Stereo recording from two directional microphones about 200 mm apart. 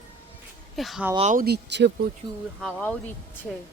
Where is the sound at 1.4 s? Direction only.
55° right (ahead or behind).